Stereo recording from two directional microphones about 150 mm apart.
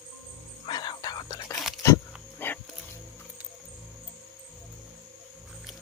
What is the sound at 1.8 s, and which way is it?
Dog, 15° left (ahead or behind).